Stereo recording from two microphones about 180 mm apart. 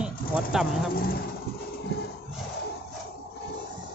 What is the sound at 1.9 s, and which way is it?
Music, 60° left (ahead or behind).